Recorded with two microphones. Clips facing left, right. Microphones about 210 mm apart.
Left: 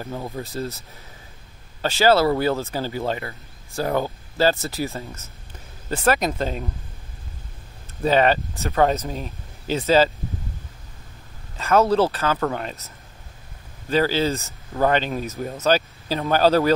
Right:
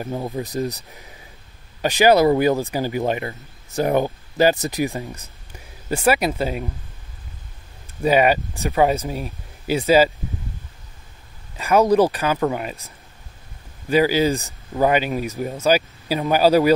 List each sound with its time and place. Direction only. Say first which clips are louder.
0.0 s speech: right 4 dB; 15° right (ahead or behind)
8.0 s speech: right 2 dB; 10° right (ahead or behind)
11.5 s speech: right 2 dB; 10° right (ahead or behind)
13.8 s speech: right 3 dB; 10° right (ahead or behind)